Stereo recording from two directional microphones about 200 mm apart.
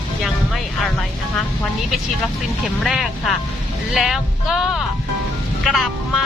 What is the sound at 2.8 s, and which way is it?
Speech, centre (ahead or behind).